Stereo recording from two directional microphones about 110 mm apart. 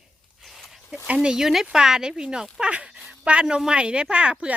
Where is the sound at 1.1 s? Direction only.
5° right (ahead or behind).